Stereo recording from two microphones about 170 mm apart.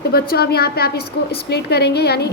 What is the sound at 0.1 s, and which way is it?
A woman's voice, 65° left (ahead or behind).